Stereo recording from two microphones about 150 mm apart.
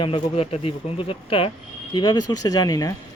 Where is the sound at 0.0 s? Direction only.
35° left (ahead or behind).